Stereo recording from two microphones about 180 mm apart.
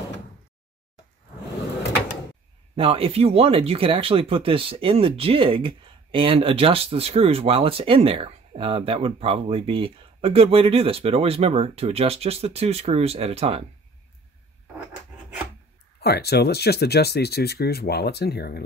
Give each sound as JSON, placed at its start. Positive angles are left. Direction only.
{"t": 2.7, "sound": "speech", "side_deg": -30}
{"t": 16.0, "sound": "speech", "side_deg": 60}